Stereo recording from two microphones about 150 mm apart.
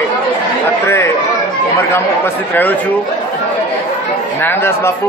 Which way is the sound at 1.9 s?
15° left (ahead or behind).